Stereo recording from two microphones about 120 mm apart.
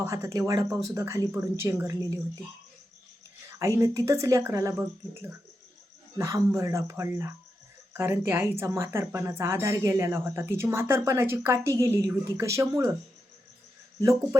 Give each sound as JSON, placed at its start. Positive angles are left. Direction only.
{"t": 0.0, "sound": "speech", "side_deg": -25}
{"t": 3.8, "sound": "speech", "side_deg": -25}